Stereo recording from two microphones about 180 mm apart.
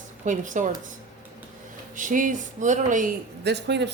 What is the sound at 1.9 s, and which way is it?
Speech, 45° right (ahead or behind).